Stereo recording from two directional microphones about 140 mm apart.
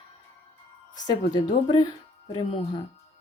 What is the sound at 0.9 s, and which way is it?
Speech, 30° left (ahead or behind).